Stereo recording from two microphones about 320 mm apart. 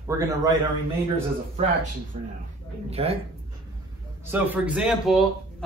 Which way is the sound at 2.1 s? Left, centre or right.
Right.